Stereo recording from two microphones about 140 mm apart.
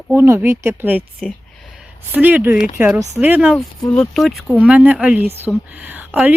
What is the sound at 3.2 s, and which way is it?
Speech, 10° right (ahead or behind).